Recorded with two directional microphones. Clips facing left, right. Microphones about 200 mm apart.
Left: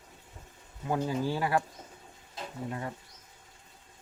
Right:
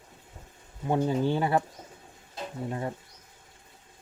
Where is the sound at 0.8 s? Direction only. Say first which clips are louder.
Right 4 dB; 25° right (ahead or behind).